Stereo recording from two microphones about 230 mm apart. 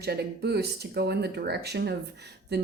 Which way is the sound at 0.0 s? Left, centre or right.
Right.